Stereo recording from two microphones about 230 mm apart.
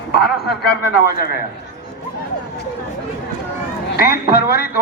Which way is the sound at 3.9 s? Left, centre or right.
Left.